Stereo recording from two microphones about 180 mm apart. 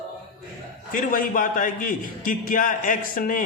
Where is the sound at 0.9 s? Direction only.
50° left (ahead or behind).